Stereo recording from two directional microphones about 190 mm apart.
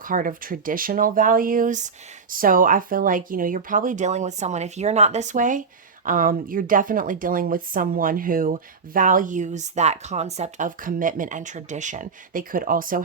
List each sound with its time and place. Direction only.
0.0 s speech: 45° right (ahead or behind)